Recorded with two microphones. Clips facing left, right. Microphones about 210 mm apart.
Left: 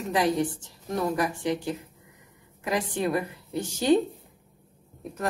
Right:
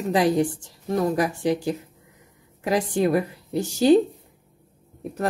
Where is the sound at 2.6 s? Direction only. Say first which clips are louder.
Right 6 dB; 35° right (ahead or behind).